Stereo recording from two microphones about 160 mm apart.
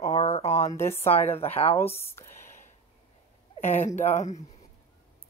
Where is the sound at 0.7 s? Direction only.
15° left (ahead or behind).